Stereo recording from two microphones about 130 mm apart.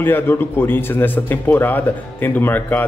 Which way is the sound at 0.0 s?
15° left (ahead or behind).